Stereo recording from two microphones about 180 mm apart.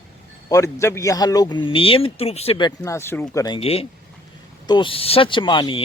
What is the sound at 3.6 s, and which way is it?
Speech, 35° left (ahead or behind).